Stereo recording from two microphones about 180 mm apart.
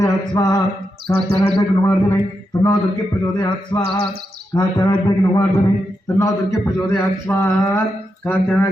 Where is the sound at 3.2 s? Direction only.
25° left (ahead or behind).